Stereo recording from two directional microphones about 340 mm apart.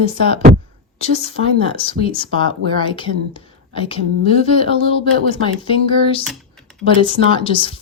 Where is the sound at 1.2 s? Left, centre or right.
Centre.